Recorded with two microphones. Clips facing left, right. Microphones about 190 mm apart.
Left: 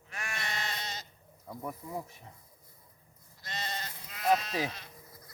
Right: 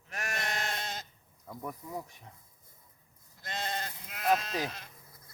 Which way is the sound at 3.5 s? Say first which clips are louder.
Right 3 dB; 55° right (ahead or behind).